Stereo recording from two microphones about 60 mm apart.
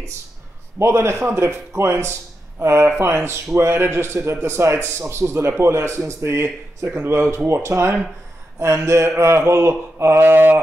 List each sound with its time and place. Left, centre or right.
0.7 s a man's voice: right
10.2 s mantra: right